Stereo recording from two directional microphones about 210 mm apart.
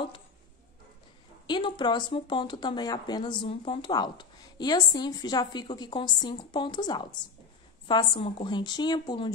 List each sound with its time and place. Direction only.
1.5 s speech: 20° left (ahead or behind)